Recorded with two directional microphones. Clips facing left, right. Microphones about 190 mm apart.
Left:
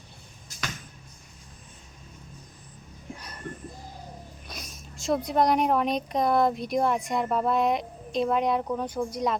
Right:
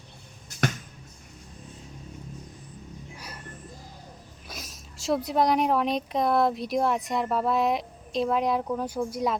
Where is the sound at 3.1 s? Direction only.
10° right (ahead or behind).